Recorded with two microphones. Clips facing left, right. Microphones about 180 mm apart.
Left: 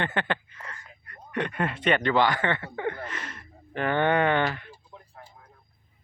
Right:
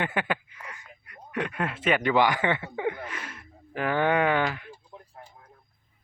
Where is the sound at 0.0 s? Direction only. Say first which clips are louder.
Even; 10° right (ahead or behind).